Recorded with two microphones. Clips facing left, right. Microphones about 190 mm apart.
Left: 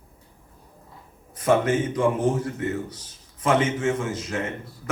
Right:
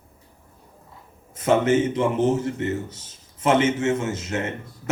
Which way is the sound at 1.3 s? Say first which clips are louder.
Right 2 dB; 25° right (ahead or behind).